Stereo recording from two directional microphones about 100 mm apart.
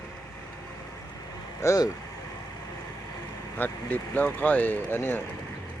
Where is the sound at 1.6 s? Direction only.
35° left (ahead or behind).